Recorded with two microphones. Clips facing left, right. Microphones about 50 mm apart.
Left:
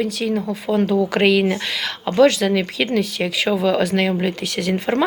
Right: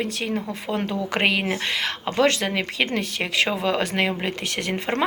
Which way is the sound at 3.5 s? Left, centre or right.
Right.